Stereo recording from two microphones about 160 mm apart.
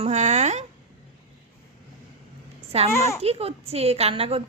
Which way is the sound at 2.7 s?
40° right (ahead or behind).